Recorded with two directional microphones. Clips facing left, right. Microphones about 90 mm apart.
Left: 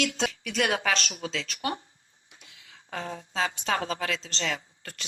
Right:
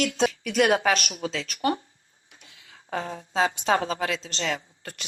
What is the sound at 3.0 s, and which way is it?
Speech, 20° right (ahead or behind).